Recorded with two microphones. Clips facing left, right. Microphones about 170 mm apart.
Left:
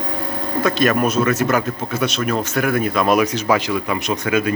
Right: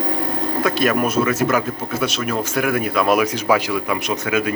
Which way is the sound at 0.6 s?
10° right (ahead or behind).